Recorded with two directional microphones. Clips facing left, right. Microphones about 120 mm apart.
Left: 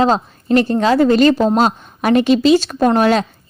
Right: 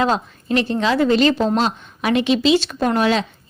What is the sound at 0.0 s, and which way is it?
A woman's voice, 40° left (ahead or behind).